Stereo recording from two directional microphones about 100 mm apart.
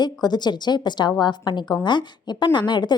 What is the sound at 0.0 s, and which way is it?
A woman's voice, 45° left (ahead or behind).